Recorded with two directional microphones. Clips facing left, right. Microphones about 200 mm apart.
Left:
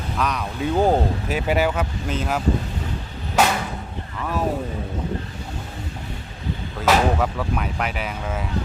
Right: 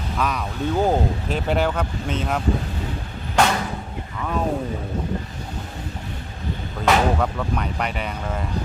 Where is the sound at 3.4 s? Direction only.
5° left (ahead or behind).